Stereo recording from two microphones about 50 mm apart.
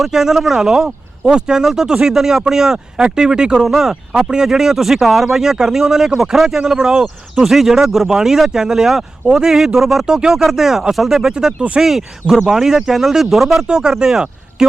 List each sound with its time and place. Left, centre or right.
0.0 s speech: centre
10.1 s speech: centre
13.7 s speech: centre